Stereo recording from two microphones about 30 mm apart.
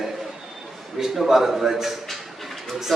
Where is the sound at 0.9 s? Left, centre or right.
Centre.